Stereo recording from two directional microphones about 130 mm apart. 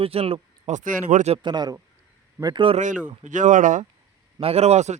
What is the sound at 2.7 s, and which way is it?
A man's voice, 75° right (ahead or behind).